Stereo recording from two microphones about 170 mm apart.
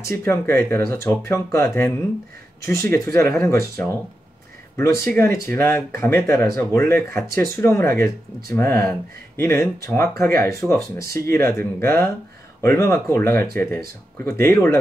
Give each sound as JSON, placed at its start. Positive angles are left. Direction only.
{"t": 0.1, "sound": "speech", "side_deg": 15}